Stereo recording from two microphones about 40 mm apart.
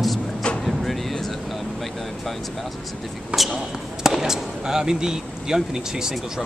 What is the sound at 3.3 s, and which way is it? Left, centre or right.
Speech, right.